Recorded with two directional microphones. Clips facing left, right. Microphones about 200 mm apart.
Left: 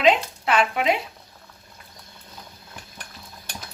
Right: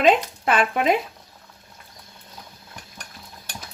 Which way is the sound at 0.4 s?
50° right (ahead or behind).